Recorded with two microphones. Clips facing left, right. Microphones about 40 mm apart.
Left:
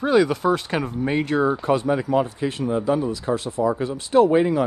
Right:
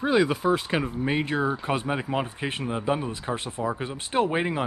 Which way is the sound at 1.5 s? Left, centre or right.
Right.